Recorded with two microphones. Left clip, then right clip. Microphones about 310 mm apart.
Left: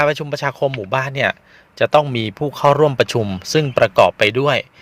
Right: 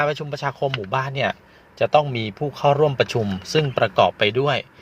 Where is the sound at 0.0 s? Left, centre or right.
Left.